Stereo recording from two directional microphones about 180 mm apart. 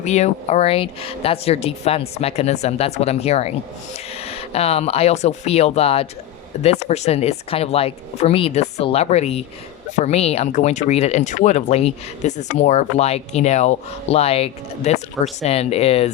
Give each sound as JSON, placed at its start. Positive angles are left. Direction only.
{"t": 0.0, "sound": "speech", "side_deg": 40}